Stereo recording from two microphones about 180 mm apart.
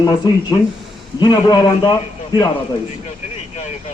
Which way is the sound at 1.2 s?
25° left (ahead or behind).